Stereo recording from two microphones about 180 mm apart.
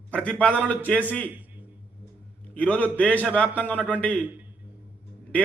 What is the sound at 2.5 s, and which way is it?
A man's voice, 10° left (ahead or behind).